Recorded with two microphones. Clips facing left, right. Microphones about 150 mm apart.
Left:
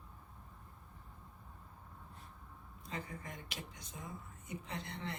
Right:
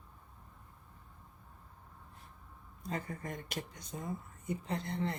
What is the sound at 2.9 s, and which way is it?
Speech, 50° right (ahead or behind).